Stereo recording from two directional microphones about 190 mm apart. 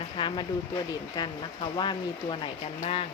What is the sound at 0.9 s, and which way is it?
Speech, 25° left (ahead or behind).